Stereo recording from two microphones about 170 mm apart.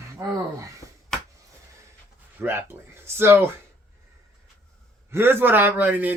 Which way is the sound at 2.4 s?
10° right (ahead or behind).